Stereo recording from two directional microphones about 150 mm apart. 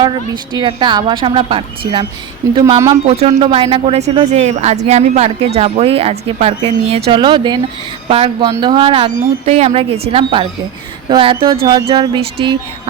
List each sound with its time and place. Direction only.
0.5 s a woman's voice: 30° right (ahead or behind)
2.4 s speech: 20° right (ahead or behind)
3.1 s a woman's voice: 45° right (ahead or behind)
7.1 s a woman's voice: 30° right (ahead or behind)